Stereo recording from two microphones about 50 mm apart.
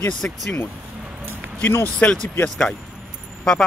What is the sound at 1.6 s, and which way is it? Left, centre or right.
Speech, left.